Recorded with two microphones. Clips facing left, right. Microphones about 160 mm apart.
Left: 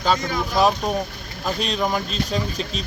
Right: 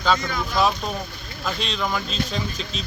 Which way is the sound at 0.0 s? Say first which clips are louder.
Left 1 dB; 40° left (ahead or behind).